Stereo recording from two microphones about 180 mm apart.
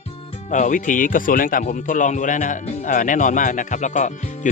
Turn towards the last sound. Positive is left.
turn(degrees=45)  # may be behind; listen again after turning